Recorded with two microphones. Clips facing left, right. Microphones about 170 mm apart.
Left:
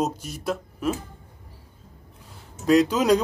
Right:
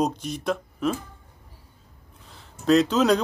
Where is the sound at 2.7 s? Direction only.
10° left (ahead or behind).